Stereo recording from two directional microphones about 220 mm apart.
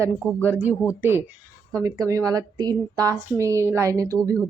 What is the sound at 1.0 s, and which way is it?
A woman's voice, 10° right (ahead or behind).